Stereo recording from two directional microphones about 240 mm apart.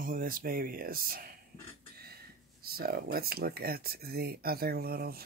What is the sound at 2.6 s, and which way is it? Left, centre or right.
Speech, right.